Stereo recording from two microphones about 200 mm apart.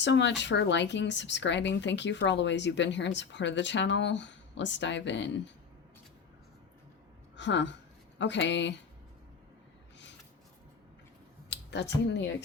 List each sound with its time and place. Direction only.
0.0 s speech: 60° left (ahead or behind)
7.3 s a woman's voice: 60° left (ahead or behind)
11.4 s a sound: 60° left (ahead or behind)